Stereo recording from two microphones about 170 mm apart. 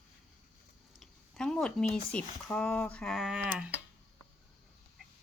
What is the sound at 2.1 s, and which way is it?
Speech, 10° left (ahead or behind).